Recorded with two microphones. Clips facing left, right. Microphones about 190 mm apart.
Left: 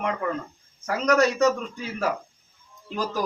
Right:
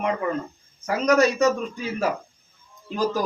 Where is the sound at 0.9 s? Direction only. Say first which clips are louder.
Right 2 dB; 5° right (ahead or behind).